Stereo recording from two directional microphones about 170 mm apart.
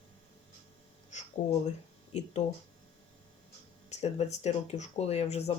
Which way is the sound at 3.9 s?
40° left (ahead or behind).